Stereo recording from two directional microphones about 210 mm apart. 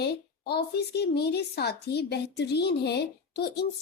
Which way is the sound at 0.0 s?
50° left (ahead or behind).